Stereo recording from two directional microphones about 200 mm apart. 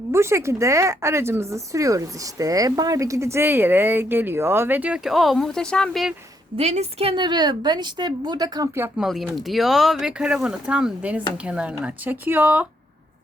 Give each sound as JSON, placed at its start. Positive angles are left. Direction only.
{"t": 0.1, "sound": "speech", "side_deg": -15}
{"t": 6.6, "sound": "a woman's voice", "side_deg": -35}
{"t": 9.0, "sound": "speech", "side_deg": 0}